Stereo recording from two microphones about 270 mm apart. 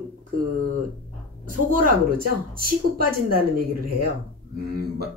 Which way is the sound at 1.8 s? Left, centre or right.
Right.